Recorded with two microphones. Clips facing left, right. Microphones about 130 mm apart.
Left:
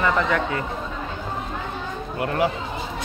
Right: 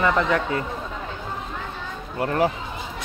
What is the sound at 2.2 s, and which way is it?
Speech, 35° right (ahead or behind).